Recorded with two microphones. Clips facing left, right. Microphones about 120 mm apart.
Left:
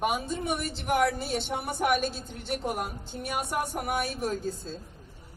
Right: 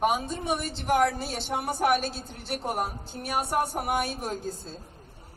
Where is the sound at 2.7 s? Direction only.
40° right (ahead or behind).